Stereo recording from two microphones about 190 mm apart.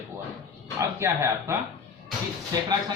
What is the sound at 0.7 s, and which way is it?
Speech, 15° right (ahead or behind).